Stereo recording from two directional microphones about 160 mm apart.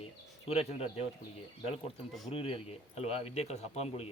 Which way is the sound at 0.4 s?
40° left (ahead or behind).